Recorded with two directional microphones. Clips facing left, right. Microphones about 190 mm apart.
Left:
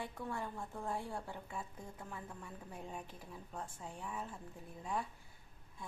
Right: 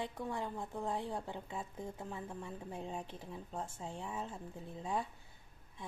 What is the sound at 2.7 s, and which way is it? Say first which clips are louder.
Speech: right 4 dB; 25° right (ahead or behind).